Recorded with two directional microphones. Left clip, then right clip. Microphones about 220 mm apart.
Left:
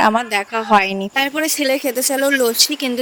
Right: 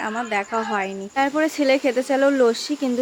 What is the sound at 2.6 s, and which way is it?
Speech, 50° left (ahead or behind).